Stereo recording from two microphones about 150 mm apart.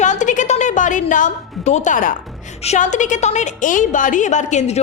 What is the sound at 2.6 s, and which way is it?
A woman's voice, 50° left (ahead or behind).